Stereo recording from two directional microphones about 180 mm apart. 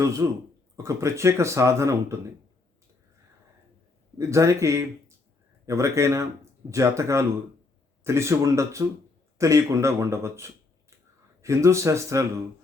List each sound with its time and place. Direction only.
0.8 s speech: 15° right (ahead or behind)
4.2 s speech: 15° right (ahead or behind)